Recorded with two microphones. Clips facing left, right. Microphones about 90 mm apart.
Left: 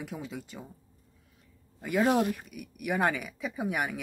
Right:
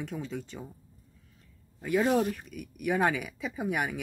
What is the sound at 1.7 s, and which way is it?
Speech, 5° left (ahead or behind).